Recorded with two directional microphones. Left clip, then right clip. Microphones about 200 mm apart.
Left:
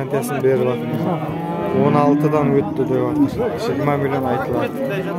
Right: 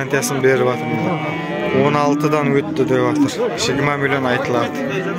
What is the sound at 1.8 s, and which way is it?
A man's voice, 5° left (ahead or behind).